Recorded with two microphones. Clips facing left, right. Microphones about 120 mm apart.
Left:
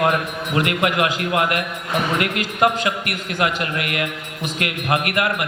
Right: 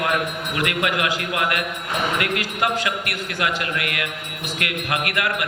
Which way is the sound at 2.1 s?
30° left (ahead or behind).